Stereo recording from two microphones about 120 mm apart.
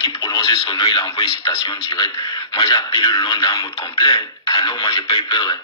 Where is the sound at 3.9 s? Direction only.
50° left (ahead or behind).